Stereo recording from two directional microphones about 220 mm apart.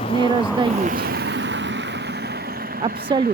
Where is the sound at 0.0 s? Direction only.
20° left (ahead or behind).